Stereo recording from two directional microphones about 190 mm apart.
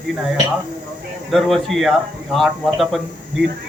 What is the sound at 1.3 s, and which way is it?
Speech, centre (ahead or behind).